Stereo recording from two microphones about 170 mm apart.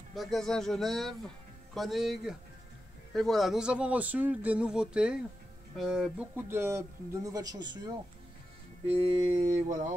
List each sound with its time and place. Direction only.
0.1 s speech: centre (ahead or behind); by 7.9 s 25° right (ahead or behind)
8.9 s mantra: 40° right (ahead or behind)